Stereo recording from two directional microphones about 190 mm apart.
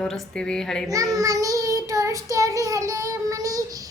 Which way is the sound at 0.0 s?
5° left (ahead or behind).